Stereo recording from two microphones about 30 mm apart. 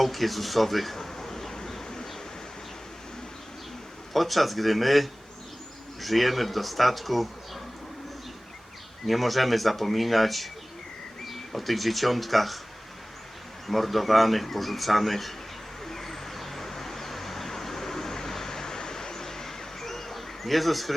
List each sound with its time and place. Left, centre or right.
0.0 s a sound: centre
4.1 s speech: centre
9.0 s speech: centre
13.7 s speech: centre
15.8 s vehicle: centre